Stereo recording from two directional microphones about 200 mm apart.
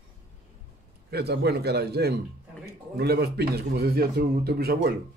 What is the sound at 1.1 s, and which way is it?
Speech, 55° right (ahead or behind).